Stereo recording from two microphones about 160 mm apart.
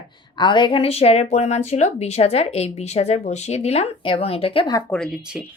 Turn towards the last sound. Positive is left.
turn(degrees=5)  # may be behind; listen again after turning